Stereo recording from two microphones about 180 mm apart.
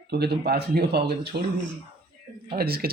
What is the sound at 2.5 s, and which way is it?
Speech, 55° right (ahead or behind).